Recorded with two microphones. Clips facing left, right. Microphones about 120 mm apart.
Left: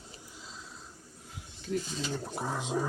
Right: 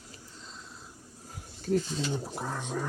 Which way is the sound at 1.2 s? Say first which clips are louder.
Right 6 dB; 40° right (ahead or behind).